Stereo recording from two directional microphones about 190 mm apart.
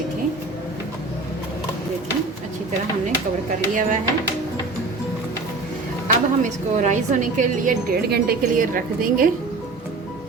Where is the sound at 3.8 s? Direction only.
45° right (ahead or behind).